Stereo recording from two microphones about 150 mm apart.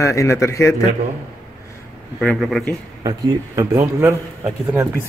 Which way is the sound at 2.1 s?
Centre (ahead or behind).